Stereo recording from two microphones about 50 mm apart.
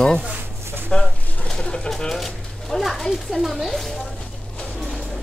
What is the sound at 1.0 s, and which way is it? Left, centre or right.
Pigeon, centre.